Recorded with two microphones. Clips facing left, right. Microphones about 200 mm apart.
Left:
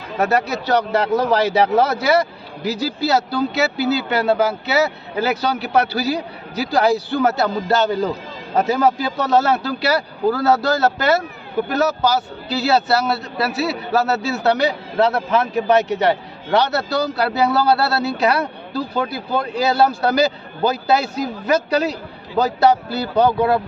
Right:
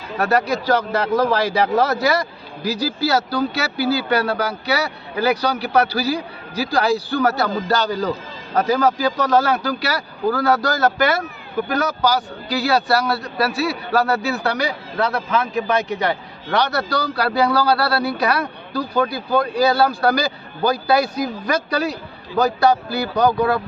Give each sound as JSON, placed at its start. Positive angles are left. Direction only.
{"t": 0.2, "sound": "a man's voice", "side_deg": 20}
{"t": 12.5, "sound": "a man's voice", "side_deg": 25}